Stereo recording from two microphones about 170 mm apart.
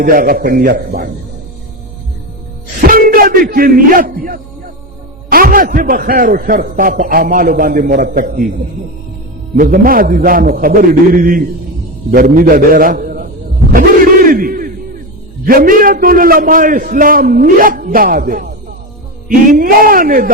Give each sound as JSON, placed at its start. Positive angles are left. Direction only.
{"t": 0.0, "sound": "a man's voice", "side_deg": -55}
{"t": 2.8, "sound": "a man's voice", "side_deg": -55}
{"t": 9.6, "sound": "a man's voice", "side_deg": -55}
{"t": 13.7, "sound": "battle cry", "side_deg": -55}
{"t": 15.4, "sound": "a man's voice", "side_deg": -55}